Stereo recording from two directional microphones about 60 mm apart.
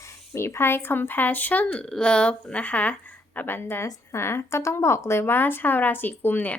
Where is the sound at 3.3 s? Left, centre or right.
Left.